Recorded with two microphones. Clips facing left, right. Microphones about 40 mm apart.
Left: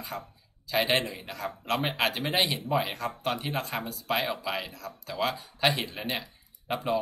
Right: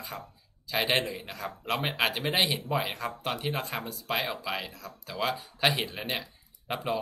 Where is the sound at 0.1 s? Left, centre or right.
Centre.